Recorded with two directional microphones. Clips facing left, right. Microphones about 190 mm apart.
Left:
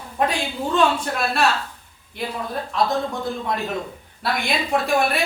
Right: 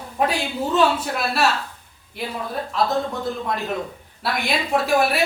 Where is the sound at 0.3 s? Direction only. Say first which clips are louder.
Right 1 dB; 5° right (ahead or behind).